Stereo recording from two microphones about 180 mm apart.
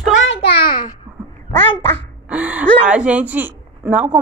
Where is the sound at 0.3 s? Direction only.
65° left (ahead or behind).